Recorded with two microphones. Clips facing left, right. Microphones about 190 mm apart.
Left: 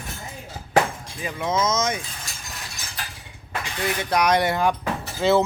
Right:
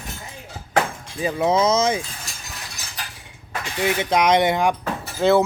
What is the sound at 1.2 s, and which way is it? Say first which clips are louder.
Speech: right 5 dB; 35° right (ahead or behind).